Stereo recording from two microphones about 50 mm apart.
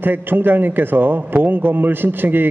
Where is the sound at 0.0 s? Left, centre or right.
Right.